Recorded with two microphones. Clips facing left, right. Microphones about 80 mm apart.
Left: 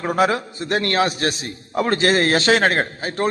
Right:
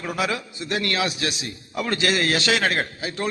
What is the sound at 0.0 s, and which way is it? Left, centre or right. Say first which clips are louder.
A man's voice: left 7 dB; left.